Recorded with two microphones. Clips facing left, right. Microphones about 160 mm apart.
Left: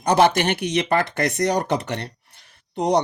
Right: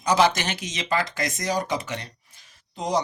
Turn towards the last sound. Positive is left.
turn(degrees=65)  # may be behind; listen again after turning